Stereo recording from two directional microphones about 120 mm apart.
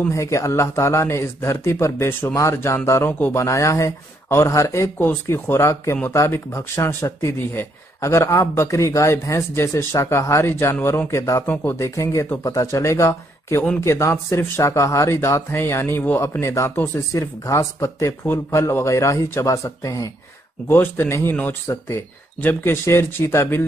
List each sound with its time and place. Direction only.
0.1 s speech: 25° left (ahead or behind)
3.4 s speech: 25° left (ahead or behind)